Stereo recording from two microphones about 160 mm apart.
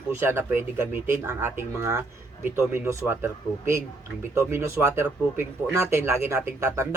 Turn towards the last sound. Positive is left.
turn(degrees=-15)  # may be behind; listen again after turning